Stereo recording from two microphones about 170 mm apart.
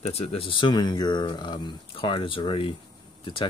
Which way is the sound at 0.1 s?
35° left (ahead or behind).